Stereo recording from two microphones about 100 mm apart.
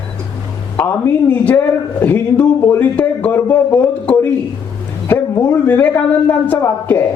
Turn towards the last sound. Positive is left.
turn(degrees=20)  # may be behind; listen again after turning